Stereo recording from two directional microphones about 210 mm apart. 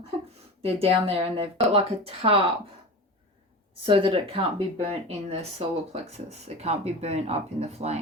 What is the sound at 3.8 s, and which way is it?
Speech, 25° right (ahead or behind).